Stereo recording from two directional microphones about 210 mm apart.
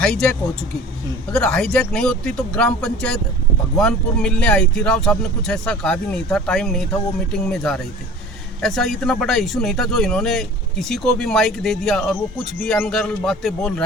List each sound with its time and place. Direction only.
0.0 s speech: 5° left (ahead or behind)